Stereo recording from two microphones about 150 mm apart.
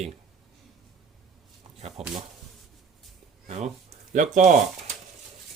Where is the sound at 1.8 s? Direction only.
45° right (ahead or behind).